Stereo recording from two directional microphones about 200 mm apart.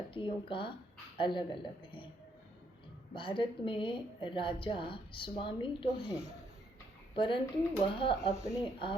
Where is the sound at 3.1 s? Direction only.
25° left (ahead or behind).